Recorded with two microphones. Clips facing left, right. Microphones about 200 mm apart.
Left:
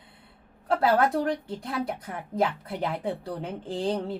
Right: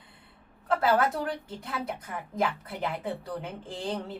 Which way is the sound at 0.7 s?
30° left (ahead or behind).